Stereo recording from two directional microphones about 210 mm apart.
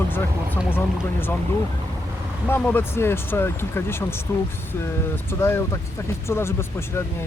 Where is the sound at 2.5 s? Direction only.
10° left (ahead or behind).